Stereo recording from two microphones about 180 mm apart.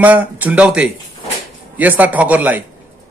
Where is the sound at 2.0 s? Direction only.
10° right (ahead or behind).